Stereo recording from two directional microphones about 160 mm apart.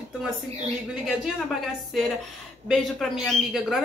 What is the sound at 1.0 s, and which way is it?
Speech, centre (ahead or behind).